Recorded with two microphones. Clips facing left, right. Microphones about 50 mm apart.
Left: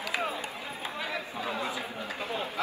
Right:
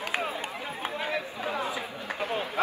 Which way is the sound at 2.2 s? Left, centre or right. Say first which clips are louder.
Right 5 dB; right.